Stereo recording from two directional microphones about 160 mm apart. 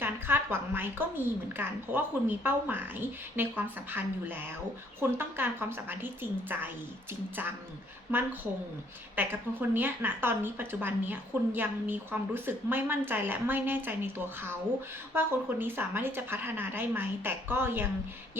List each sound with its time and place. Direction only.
0.0 s speech: 15° right (ahead or behind)
8.1 s speech: 15° right (ahead or behind)